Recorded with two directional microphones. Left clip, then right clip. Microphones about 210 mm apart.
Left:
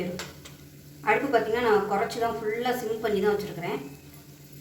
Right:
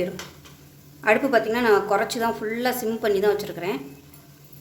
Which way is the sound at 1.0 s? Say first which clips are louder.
Right 4 dB; 55° right (ahead or behind).